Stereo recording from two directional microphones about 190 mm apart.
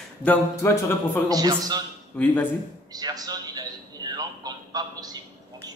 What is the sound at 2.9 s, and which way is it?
A man's voice, 20° right (ahead or behind).